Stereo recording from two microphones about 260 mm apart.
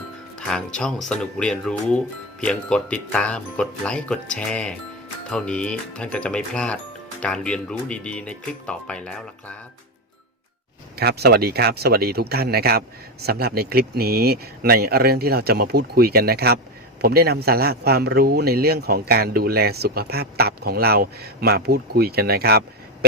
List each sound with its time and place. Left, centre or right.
0.3 s speech: centre
10.9 s a man's voice: right